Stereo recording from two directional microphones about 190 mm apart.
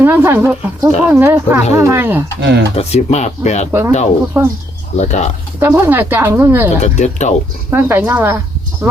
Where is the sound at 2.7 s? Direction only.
35° left (ahead or behind).